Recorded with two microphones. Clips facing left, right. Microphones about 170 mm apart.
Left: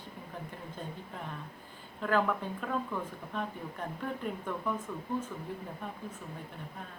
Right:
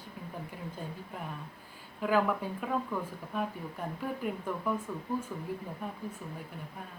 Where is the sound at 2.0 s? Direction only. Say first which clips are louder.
Right 1 dB; 10° right (ahead or behind).